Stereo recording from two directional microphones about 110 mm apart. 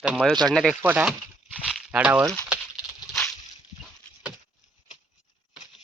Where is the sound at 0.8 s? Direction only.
15° right (ahead or behind).